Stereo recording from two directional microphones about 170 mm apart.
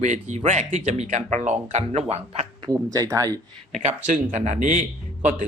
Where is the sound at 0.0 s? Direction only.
45° right (ahead or behind).